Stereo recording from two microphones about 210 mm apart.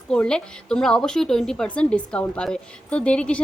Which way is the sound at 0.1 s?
5° left (ahead or behind).